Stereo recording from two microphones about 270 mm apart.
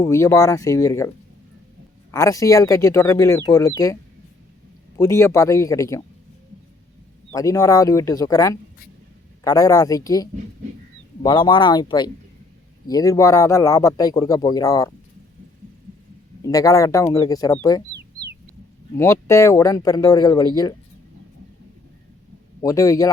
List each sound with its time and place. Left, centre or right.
0.0 s speech: centre
2.1 s speech: centre
4.9 s speech: centre
7.3 s speech: centre
16.4 s speech: centre
18.9 s speech: centre
22.6 s speech: centre